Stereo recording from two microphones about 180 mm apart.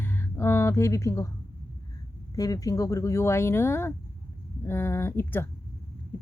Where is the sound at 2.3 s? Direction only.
20° left (ahead or behind).